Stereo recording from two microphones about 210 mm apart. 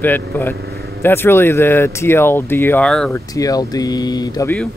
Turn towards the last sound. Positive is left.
turn(degrees=15)  # may be behind; listen again after turning